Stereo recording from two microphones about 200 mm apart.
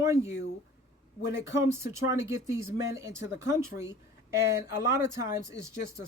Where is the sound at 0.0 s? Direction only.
15° right (ahead or behind).